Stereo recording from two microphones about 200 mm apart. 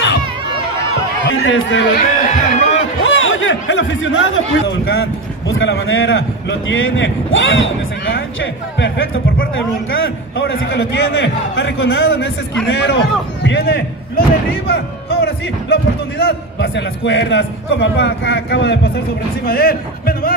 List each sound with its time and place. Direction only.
1.4 s a man's voice: 65° left (ahead or behind)
2.0 s speech: 40° left (ahead or behind)
3.0 s a man's voice: 80° left
19.4 s a man's voice: 50° left (ahead or behind)